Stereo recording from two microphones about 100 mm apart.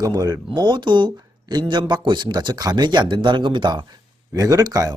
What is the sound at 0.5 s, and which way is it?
A man's voice, 50° right (ahead or behind).